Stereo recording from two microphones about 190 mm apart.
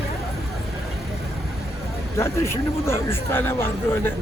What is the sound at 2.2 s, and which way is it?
Speech, 15° left (ahead or behind).